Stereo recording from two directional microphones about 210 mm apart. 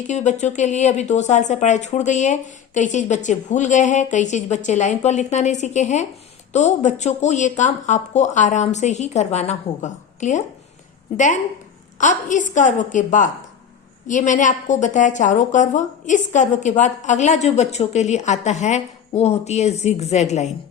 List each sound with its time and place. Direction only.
0.1 s a woman's voice: 35° left (ahead or behind)
11.9 s a woman's voice: 35° left (ahead or behind)